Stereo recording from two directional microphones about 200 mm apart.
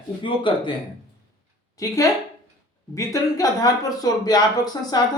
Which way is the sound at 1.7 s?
15° left (ahead or behind).